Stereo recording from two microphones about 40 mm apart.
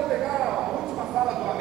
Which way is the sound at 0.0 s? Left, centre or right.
Centre.